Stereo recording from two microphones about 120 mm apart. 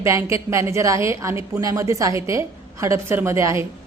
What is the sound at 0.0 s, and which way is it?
A woman's voice, 25° right (ahead or behind).